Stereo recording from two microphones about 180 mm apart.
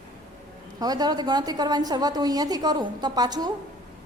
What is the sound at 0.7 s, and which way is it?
A woman's voice, 20° right (ahead or behind).